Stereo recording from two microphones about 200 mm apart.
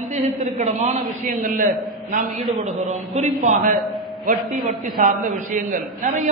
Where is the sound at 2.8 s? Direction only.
35° right (ahead or behind).